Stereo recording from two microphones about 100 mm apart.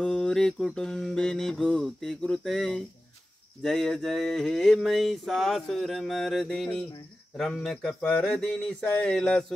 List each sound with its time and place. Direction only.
0.0 s mantra: 10° left (ahead or behind)
3.6 s a sound: 5° left (ahead or behind)
7.3 s mantra: 5° left (ahead or behind)